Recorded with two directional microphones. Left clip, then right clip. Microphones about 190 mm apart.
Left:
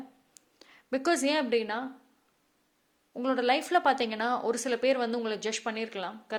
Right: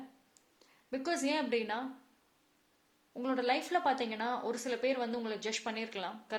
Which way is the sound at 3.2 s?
25° left (ahead or behind).